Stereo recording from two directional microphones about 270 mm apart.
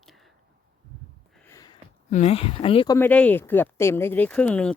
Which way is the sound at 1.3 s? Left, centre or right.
Centre.